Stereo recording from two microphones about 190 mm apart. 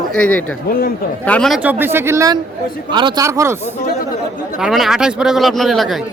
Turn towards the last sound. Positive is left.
turn(degrees=0)  # may be behind; listen again after turning